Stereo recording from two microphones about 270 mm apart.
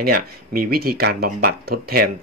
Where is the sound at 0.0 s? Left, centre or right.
Right.